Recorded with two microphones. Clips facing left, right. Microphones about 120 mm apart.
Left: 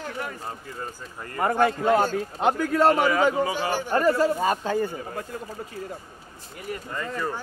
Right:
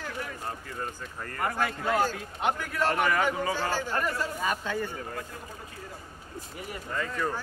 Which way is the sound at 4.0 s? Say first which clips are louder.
Left 9 dB; 35° left (ahead or behind).